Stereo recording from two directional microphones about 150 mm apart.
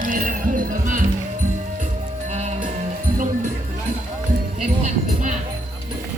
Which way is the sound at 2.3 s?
50° right (ahead or behind).